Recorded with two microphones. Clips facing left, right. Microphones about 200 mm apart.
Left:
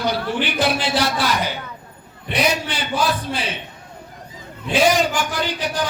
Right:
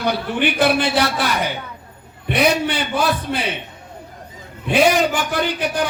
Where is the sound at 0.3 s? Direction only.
55° right (ahead or behind).